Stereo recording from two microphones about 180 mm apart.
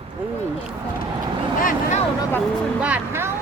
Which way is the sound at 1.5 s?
50° left (ahead or behind).